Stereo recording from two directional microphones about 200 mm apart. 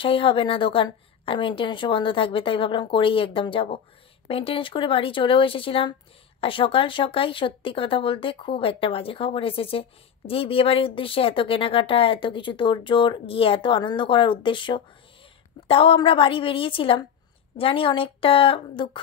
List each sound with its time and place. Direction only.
0.0 s speech: 25° left (ahead or behind)